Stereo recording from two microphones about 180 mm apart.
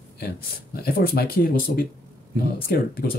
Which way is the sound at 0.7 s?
60° left (ahead or behind).